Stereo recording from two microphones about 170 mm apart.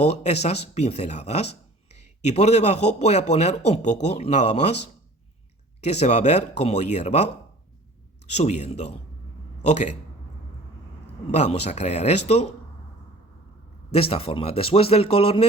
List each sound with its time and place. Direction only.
0.0 s speech: 40° left (ahead or behind)
8.3 s speech: 40° left (ahead or behind)
11.0 s speech: 40° left (ahead or behind)
13.9 s speech: 35° left (ahead or behind)